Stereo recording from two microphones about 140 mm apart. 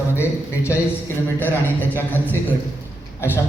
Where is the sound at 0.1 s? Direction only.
15° left (ahead or behind).